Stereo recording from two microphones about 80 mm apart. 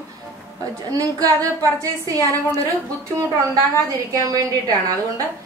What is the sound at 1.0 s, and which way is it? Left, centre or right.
Speech, right.